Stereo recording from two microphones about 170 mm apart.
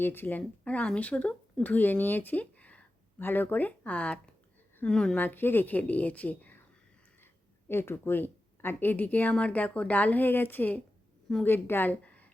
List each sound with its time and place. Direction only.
0.0 s a woman's voice: 10° left (ahead or behind)
7.7 s a woman's voice: 15° left (ahead or behind)